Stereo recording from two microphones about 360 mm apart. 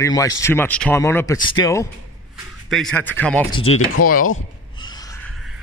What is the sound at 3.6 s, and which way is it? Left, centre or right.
Speech, centre.